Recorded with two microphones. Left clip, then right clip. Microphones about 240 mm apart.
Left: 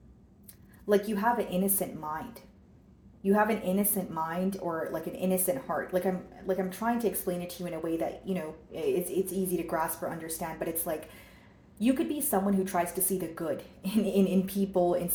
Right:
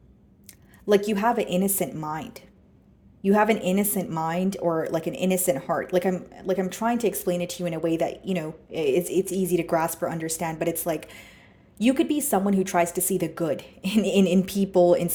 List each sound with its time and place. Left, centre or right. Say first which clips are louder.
0.9 s a woman's voice: right 5 dB; right